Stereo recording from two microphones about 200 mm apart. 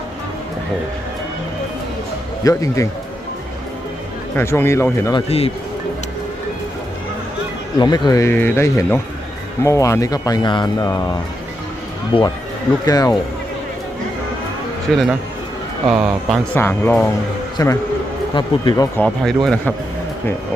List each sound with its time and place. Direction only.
2.4 s speech: 15° left (ahead or behind)
4.4 s speech: 10° left (ahead or behind)
7.8 s speech: 20° left (ahead or behind)
14.9 s speech: centre (ahead or behind)
16.6 s speech: 10° left (ahead or behind)
18.9 s speech: 5° left (ahead or behind)